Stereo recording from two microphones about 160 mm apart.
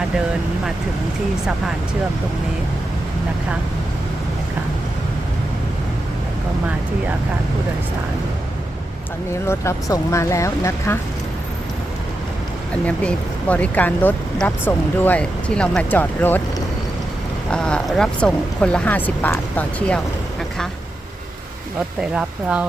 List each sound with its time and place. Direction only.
9.5 s speech: 20° left (ahead or behind)
12.8 s speech: 5° left (ahead or behind)
17.5 s speech: 5° left (ahead or behind)
22.1 s speech: 5° right (ahead or behind)